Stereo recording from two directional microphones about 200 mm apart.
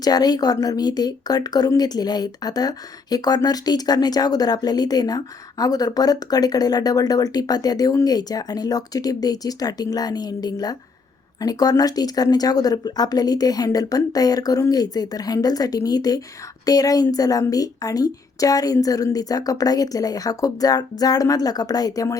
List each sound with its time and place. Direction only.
0.0 s a woman's voice: 20° left (ahead or behind)